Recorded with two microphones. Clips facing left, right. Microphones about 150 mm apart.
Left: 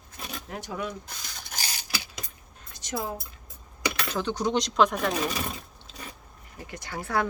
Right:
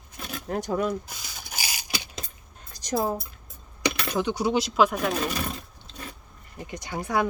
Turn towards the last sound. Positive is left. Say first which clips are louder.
# right 2 dB
turn(degrees=-15)  # may be behind; listen again after turning